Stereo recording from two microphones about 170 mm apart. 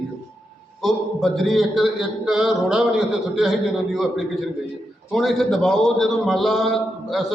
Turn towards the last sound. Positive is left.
turn(degrees=0)  # may be behind; listen again after turning